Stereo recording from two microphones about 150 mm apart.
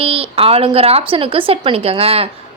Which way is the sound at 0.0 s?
40° right (ahead or behind).